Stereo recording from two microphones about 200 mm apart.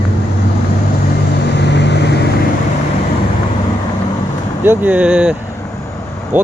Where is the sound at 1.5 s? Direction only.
60° left (ahead or behind).